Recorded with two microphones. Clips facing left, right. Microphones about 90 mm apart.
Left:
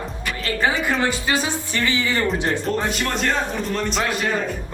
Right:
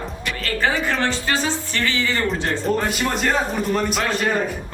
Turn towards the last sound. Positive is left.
turn(degrees=-5)  # may be behind; listen again after turning